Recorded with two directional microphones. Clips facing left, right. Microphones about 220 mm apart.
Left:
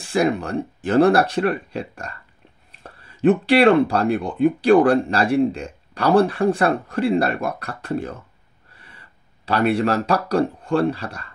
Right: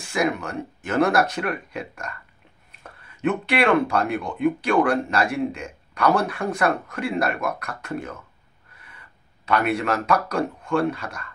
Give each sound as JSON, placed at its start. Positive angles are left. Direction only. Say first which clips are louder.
{"t": 0.0, "sound": "speech", "louder": "left 4 dB", "side_deg": 30}
{"t": 8.7, "sound": "gasp", "louder": "left 2 dB", "side_deg": 30}
{"t": 9.5, "sound": "speech", "louder": "left 4 dB", "side_deg": 30}